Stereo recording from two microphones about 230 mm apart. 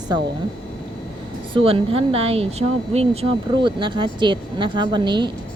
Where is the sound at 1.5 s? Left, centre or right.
Right.